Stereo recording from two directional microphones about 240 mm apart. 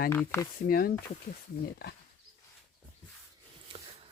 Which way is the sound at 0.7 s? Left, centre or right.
Left.